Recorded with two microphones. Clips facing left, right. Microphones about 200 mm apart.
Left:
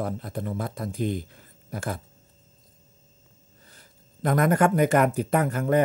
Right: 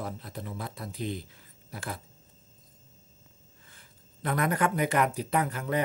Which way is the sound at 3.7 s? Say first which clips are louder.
Left 4 dB; 40° left (ahead or behind).